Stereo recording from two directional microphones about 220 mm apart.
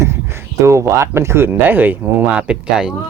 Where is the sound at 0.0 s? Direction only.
10° right (ahead or behind).